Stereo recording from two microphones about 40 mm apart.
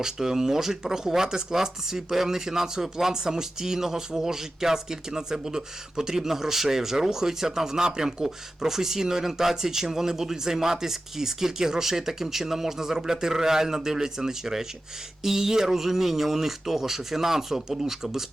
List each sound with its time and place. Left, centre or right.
0.0 s speech: centre